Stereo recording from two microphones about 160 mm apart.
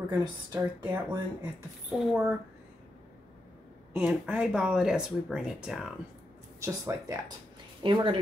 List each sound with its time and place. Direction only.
0.2 s speech: 25° right (ahead or behind)
1.9 s speech: 10° right (ahead or behind)
3.9 s speech: 5° right (ahead or behind)
6.6 s speech: 20° right (ahead or behind)
7.8 s speech: 30° right (ahead or behind)